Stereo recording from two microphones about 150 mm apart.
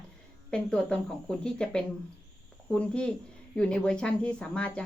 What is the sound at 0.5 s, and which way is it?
Speech, 5° left (ahead or behind).